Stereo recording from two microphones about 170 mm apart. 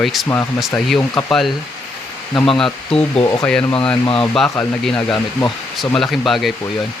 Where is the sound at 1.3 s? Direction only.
Centre (ahead or behind).